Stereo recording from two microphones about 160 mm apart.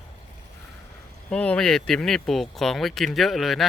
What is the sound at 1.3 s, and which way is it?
Speech, 5° left (ahead or behind).